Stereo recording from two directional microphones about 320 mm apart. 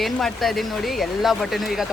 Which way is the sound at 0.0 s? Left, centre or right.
Centre.